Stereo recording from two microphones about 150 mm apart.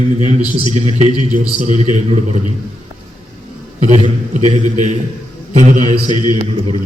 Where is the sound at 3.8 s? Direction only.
45° right (ahead or behind).